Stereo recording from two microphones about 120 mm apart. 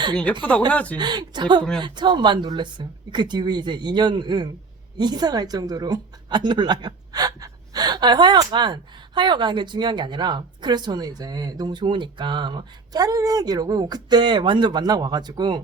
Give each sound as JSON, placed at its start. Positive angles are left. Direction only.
{"t": 0.3, "sound": "speech", "side_deg": 10}
{"t": 0.9, "sound": "a woman's voice", "side_deg": -35}